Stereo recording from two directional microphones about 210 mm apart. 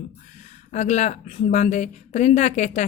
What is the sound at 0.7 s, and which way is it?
A woman's voice, 35° left (ahead or behind).